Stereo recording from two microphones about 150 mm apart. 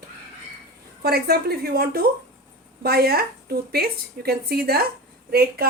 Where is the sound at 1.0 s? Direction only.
90° right.